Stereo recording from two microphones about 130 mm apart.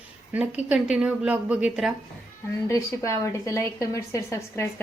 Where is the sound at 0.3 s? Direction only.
10° right (ahead or behind).